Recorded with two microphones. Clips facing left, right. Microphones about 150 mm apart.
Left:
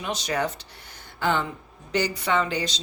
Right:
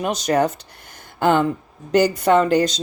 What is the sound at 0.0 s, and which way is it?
Speech, 45° right (ahead or behind).